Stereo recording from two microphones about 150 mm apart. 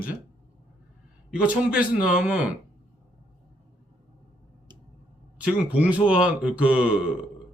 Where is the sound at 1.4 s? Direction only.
10° right (ahead or behind).